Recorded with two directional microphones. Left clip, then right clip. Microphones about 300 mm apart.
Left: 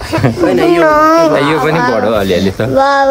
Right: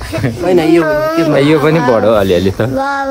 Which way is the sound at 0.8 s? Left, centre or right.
Left.